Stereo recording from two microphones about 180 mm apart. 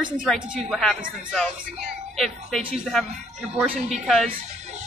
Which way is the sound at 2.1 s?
Centre (ahead or behind).